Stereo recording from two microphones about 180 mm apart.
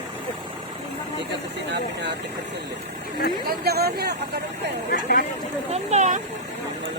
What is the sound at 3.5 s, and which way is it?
Speech, 60° right (ahead or behind).